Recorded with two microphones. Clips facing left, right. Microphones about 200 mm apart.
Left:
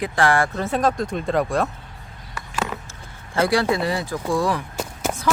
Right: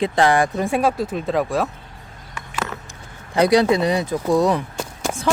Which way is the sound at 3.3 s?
20° right (ahead or behind).